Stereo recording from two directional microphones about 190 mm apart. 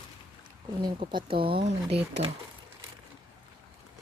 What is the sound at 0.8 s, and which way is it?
Speech, 25° right (ahead or behind).